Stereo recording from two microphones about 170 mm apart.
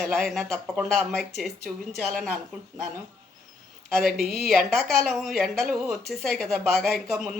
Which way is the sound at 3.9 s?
Centre (ahead or behind).